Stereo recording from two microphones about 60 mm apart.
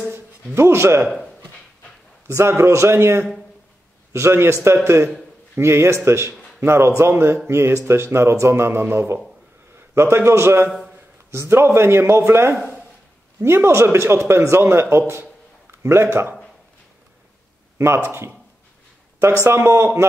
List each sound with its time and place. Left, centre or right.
0.6 s speech: right
2.2 s a man's voice: right
17.7 s speech: right
19.4 s speech: right